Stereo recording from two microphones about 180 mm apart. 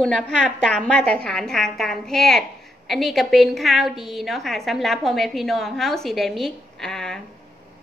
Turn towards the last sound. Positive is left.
turn(degrees=5)  # may be behind; listen again after turning